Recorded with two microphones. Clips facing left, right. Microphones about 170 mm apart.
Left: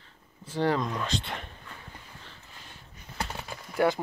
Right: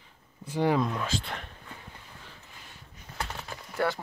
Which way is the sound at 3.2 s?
10° left (ahead or behind).